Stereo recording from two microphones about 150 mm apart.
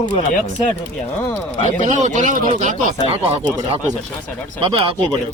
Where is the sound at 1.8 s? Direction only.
55° right (ahead or behind).